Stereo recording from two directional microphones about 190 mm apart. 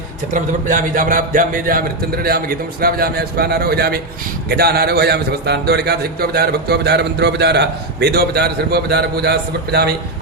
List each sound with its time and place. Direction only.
0.3 s a man's voice: 45° right (ahead or behind)